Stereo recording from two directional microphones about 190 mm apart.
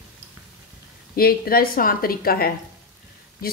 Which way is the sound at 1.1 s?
55° left (ahead or behind).